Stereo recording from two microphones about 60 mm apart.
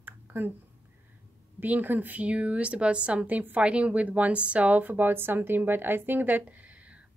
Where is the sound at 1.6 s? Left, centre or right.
Right.